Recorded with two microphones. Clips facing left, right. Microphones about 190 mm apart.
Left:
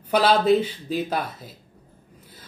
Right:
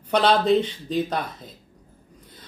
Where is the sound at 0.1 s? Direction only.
5° left (ahead or behind).